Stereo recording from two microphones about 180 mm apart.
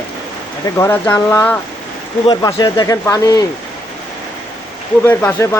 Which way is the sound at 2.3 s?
25° left (ahead or behind).